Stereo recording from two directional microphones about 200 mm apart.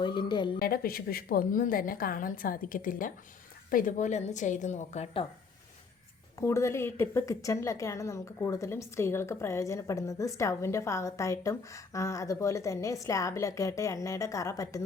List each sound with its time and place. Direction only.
0.0 s speech: 20° left (ahead or behind)
0.6 s a woman's voice: 50° left (ahead or behind)
6.4 s a woman's voice: 15° left (ahead or behind)